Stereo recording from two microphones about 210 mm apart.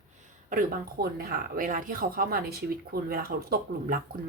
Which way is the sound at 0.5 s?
45° right (ahead or behind).